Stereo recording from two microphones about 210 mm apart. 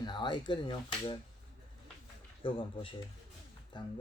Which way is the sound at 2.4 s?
25° left (ahead or behind).